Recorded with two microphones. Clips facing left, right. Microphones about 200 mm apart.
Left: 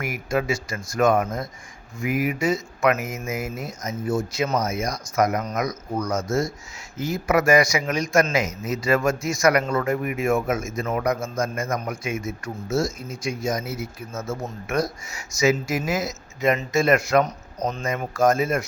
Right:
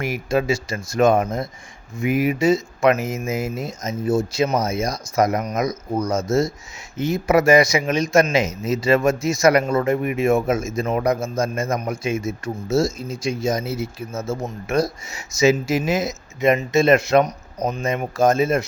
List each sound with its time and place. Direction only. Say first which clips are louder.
0.0 s a man's voice: right 4 dB; 30° right (ahead or behind)
17.6 s speech: right 3 dB; 10° right (ahead or behind)
18.1 s a man's voice: right 2 dB; 25° right (ahead or behind)